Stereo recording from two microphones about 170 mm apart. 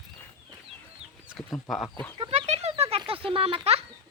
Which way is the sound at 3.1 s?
35° right (ahead or behind).